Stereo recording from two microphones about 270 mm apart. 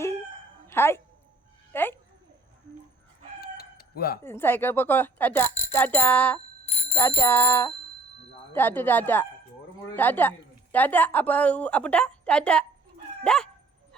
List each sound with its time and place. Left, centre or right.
0.7 s speech: centre
3.4 s chicken: left
4.2 s a woman's voice: centre
6.7 s bicycle bell: left
7.3 s a woman's voice: centre
13.2 s dog: centre